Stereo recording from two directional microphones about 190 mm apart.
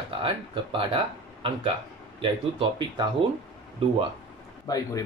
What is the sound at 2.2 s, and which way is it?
Speech, 25° right (ahead or behind).